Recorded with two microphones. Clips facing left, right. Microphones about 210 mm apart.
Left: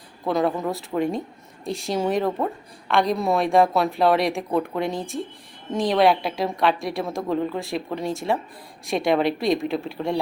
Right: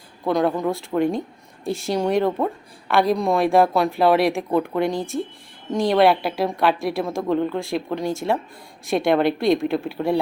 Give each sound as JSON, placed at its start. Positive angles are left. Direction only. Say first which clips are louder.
{"t": 0.3, "sound": "a woman's voice", "louder": "right 2 dB", "side_deg": 0}